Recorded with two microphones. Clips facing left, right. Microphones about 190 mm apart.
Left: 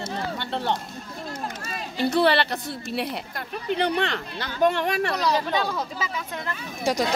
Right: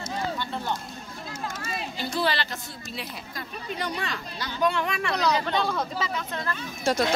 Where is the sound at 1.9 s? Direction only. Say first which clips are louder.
Left 8 dB; 65° left (ahead or behind); by 5.1 s 45° left (ahead or behind).